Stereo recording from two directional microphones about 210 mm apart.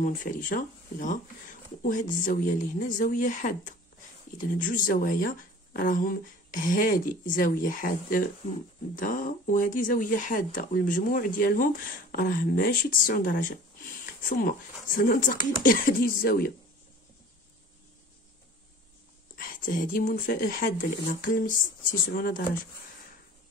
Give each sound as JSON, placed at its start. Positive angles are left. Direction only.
{"t": 0.0, "sound": "speech", "side_deg": 40}
{"t": 15.0, "sound": "speech", "side_deg": 40}
{"t": 19.3, "sound": "speech", "side_deg": 40}